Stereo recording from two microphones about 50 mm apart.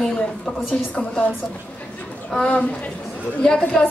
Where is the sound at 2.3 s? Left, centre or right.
Left.